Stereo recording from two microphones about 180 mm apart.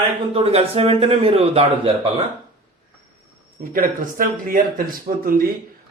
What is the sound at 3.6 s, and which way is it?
Speech, 50° right (ahead or behind).